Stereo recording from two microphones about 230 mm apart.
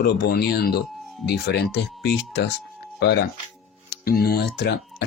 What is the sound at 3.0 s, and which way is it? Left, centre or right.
Speech, left.